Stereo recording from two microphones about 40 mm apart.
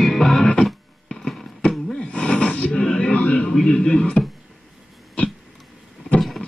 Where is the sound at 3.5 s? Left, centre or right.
Centre.